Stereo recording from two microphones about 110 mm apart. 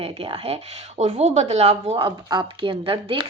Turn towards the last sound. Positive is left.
turn(degrees=-55)  # may be behind; listen again after turning